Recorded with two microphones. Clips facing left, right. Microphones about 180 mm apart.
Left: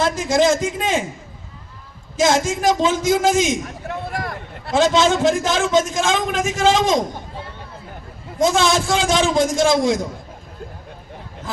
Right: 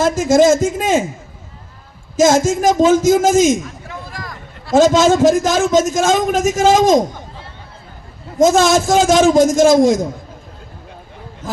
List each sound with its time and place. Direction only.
0.0 s a man's voice: 45° right (ahead or behind)
2.1 s a man's voice: 45° right (ahead or behind)
3.8 s a sound: 65° left (ahead or behind)
4.7 s a man's voice: 45° right (ahead or behind)
8.4 s a man's voice: 45° right (ahead or behind)